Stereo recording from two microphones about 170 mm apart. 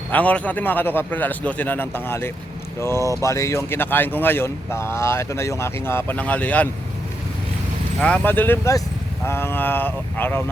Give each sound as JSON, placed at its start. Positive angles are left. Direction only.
{"t": 0.1, "sound": "speech", "side_deg": 10}
{"t": 8.0, "sound": "speech", "side_deg": 10}